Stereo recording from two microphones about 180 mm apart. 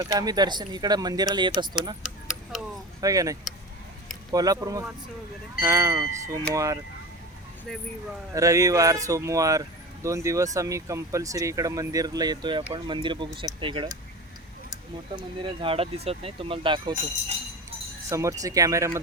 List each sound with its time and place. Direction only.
0.0 s speech: 20° right (ahead or behind)
2.0 s tick-tock: 5° right (ahead or behind)
3.0 s speech: 20° right (ahead or behind)
7.7 s speech: centre (ahead or behind)
8.3 s speech: 20° right (ahead or behind)
18.1 s speech: 20° right (ahead or behind)